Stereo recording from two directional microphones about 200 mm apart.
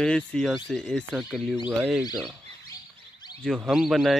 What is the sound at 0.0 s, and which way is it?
Speech, 5° left (ahead or behind).